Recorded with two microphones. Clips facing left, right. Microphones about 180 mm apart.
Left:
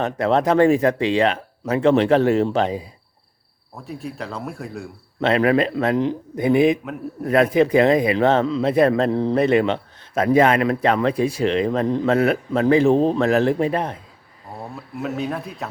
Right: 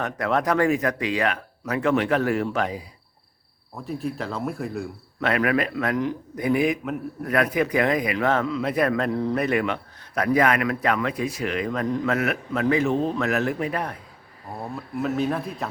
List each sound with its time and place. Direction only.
0.0 s speech: 25° left (ahead or behind)
3.8 s speech: centre (ahead or behind)
5.2 s speech: 25° left (ahead or behind)
14.6 s speech: centre (ahead or behind)